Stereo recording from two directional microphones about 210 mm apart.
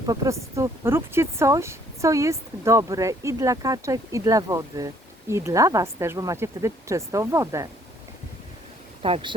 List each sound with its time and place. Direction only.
0.1 s speech: 15° right (ahead or behind)
9.0 s speech: 25° right (ahead or behind)